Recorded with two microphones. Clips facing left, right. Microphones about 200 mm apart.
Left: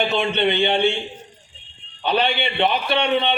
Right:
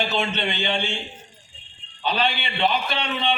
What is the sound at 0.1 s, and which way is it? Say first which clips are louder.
Speech: left 6 dB; 60° left (ahead or behind).